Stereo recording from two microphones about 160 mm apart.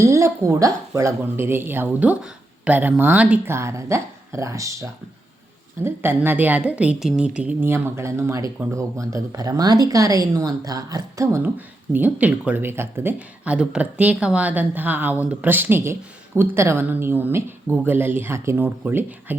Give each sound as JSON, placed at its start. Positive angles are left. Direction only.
{"t": 0.0, "sound": "a woman's voice", "side_deg": -20}